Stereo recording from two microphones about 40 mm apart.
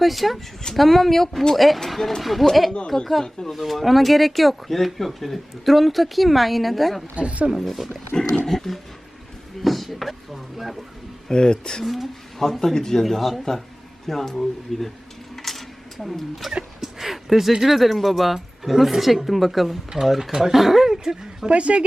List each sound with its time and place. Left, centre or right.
0.0 s speech: centre
7.2 s speech: right
7.5 s speech: centre
8.1 s wild animals: centre
8.4 s speech: centre
11.3 s speech: centre
12.4 s speech: centre
15.4 s a sound: centre
16.0 s speech: centre
16.8 s a sound: centre
17.5 s speech: centre
21.5 s a woman's voice: right